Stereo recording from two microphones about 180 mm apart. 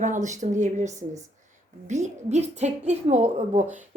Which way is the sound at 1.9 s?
40° right (ahead or behind).